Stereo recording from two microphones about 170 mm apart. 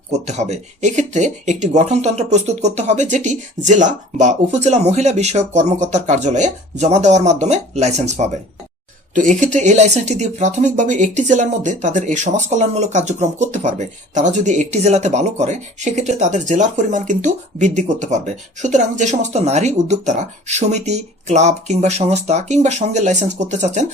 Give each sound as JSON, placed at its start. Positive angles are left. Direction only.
{"t": 0.3, "sound": "speech", "side_deg": -40}